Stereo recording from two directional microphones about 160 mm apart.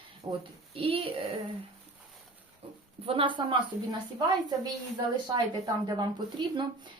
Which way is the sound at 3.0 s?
35° right (ahead or behind).